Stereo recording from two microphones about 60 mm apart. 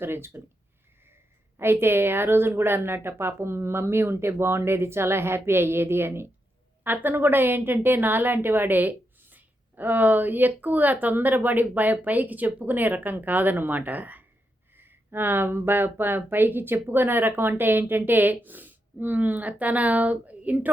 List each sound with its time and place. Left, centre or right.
0.0 s a woman's voice: right
1.5 s a woman's voice: right